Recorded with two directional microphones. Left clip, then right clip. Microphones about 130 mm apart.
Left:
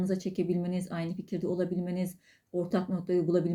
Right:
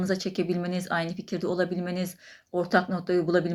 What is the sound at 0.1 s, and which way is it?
Speech, 25° left (ahead or behind).